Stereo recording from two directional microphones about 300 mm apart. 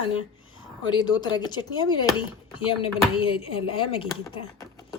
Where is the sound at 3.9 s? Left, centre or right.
Centre.